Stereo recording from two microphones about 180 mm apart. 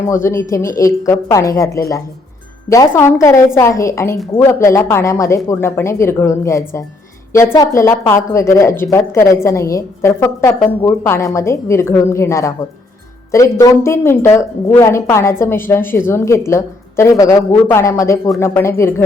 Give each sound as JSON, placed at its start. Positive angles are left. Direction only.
{"t": 0.1, "sound": "a woman's voice", "side_deg": 15}